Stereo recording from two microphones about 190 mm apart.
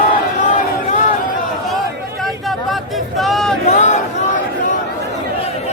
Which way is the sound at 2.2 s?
Centre (ahead or behind).